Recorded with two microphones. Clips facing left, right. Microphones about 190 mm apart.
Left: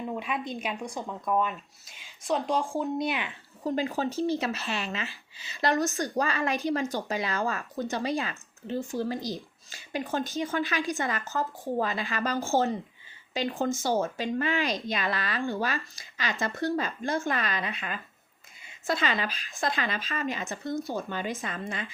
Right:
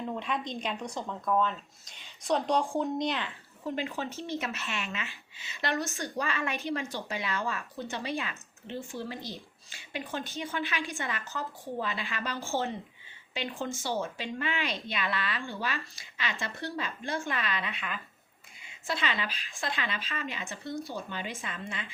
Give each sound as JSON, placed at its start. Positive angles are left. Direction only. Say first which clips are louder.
{"t": 0.0, "sound": "speech", "louder": "left 1 dB", "side_deg": 10}
{"t": 3.6, "sound": "speech", "louder": "left 5 dB", "side_deg": 40}